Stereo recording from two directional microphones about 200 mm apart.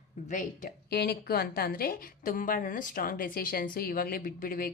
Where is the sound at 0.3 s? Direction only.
40° left (ahead or behind).